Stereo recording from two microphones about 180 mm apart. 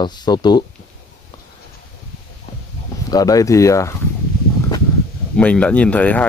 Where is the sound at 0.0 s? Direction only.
25° left (ahead or behind).